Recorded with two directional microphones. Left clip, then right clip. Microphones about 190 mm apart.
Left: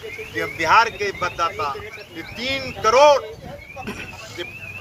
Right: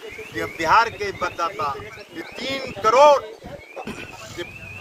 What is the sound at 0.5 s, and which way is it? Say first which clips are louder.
Speech: left 1 dB; 20° right (ahead or behind).